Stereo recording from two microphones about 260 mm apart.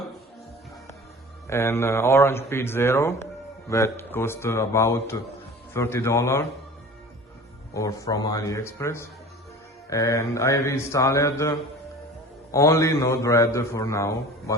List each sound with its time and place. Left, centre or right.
1.5 s a man's voice: centre
7.7 s a man's voice: centre